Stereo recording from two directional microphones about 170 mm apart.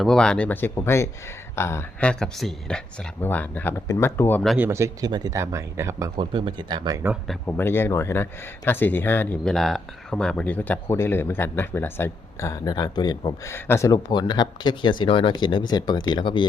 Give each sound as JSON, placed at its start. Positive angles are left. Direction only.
{"t": 0.0, "sound": "speech", "side_deg": 5}
{"t": 4.4, "sound": "speech", "side_deg": -10}
{"t": 6.1, "sound": "speech", "side_deg": -30}
{"t": 7.3, "sound": "speech", "side_deg": 10}